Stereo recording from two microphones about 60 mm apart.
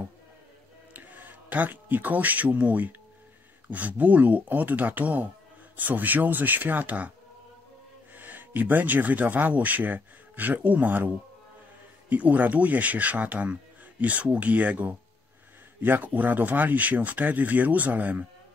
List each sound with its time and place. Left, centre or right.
0.9 s speech: right
8.1 s speech: right
12.1 s speech: right